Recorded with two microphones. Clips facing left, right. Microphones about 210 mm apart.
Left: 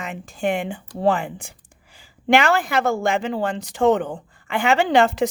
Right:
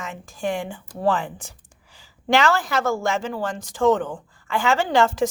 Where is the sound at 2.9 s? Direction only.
55° left (ahead or behind).